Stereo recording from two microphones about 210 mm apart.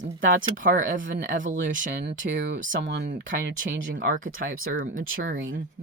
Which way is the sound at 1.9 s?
60° right (ahead or behind).